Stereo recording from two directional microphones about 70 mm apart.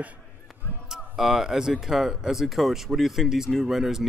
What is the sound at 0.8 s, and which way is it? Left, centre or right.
Speech, centre.